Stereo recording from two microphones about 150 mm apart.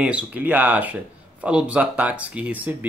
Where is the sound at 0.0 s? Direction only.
10° right (ahead or behind).